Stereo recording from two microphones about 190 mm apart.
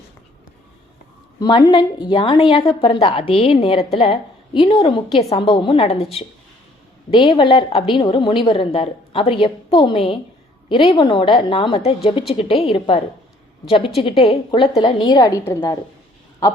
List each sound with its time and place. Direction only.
1.4 s a woman's voice: 25° left (ahead or behind)